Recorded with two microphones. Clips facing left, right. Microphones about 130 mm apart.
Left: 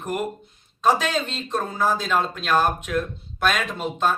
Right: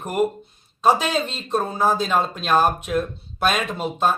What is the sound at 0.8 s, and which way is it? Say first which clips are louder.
Speech: right 2 dB; 15° right (ahead or behind).